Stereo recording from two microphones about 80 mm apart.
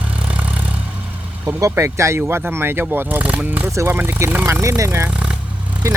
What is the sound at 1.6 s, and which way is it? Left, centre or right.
Speech, right.